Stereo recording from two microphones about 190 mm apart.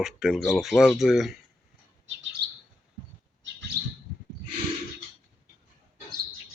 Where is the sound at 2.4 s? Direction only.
60° right (ahead or behind).